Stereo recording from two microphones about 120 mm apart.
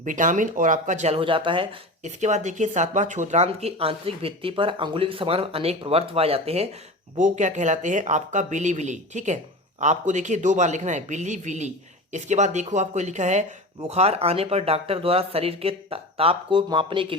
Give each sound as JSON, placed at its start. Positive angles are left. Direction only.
{"t": 0.0, "sound": "speech", "side_deg": -90}
{"t": 1.2, "sound": "speech", "side_deg": -45}
{"t": 2.0, "sound": "speech", "side_deg": -80}
{"t": 7.2, "sound": "speech", "side_deg": -90}
{"t": 13.8, "sound": "speech", "side_deg": -60}